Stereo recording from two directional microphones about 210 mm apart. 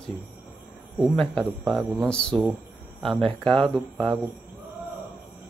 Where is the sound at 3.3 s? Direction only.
25° right (ahead or behind).